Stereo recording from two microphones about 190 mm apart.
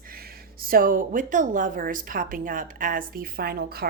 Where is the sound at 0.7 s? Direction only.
45° right (ahead or behind).